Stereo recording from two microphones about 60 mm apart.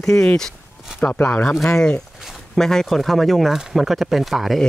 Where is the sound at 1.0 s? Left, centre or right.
Left; by 4.6 s centre.